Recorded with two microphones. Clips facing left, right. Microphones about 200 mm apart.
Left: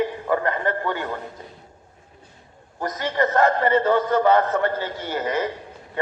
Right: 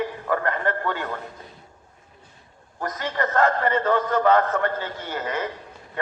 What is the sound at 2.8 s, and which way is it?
A man's voice, 20° left (ahead or behind).